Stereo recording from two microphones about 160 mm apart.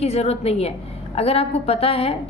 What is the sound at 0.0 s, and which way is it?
A woman's voice, 40° left (ahead or behind).